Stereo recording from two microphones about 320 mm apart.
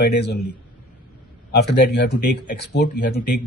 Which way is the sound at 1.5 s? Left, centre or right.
Left.